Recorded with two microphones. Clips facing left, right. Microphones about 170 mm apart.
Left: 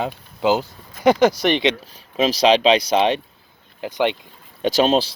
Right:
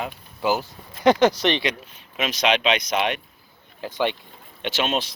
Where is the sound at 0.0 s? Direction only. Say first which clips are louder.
Left 5 dB; 20° left (ahead or behind).